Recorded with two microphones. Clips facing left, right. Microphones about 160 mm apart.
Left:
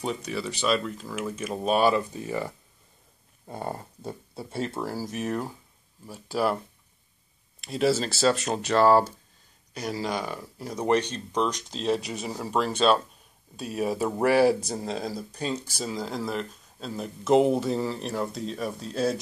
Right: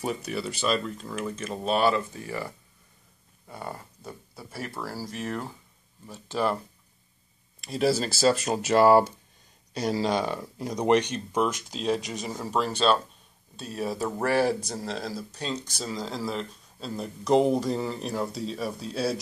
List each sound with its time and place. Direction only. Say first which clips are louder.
0.0 s speech: even; 5° right (ahead or behind); by 2.5 s 20° left (ahead or behind)
3.4 s speech: left 4 dB; 30° left (ahead or behind); by 6.6 s 5° left (ahead or behind)
7.6 s speech: left 1 dB; centre (ahead or behind)
9.8 s speech: right 4 dB; 25° right (ahead or behind); by 19.1 s 5° right (ahead or behind)